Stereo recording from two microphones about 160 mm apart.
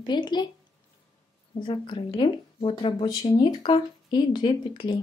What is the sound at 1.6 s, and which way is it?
Speech, 30° left (ahead or behind).